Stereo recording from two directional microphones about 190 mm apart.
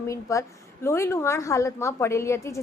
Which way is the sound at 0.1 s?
15° left (ahead or behind).